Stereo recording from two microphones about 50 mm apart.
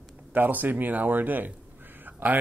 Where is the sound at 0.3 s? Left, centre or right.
Right.